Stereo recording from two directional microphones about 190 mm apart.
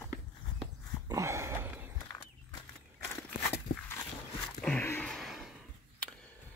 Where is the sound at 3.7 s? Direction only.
50° left (ahead or behind).